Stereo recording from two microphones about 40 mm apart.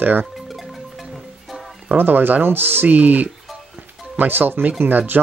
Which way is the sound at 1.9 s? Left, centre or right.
Right.